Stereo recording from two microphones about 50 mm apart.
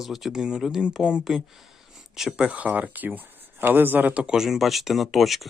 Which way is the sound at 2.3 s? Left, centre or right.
Right.